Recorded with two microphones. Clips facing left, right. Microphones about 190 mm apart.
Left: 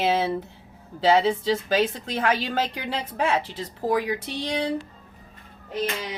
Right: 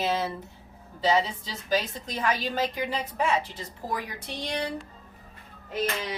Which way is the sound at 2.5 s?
85° left.